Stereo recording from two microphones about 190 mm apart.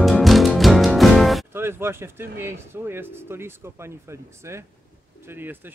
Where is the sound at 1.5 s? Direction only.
10° right (ahead or behind).